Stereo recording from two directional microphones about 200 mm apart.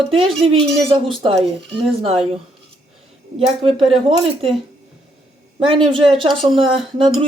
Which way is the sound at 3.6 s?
25° right (ahead or behind).